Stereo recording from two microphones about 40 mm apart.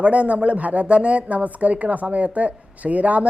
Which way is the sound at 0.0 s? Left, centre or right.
Right.